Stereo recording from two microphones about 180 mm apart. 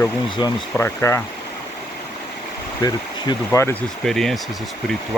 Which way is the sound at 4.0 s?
Centre (ahead or behind).